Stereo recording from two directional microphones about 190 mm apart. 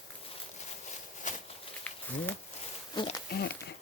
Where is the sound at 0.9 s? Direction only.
40° left (ahead or behind).